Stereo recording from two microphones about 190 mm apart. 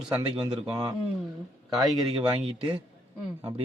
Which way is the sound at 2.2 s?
25° right (ahead or behind).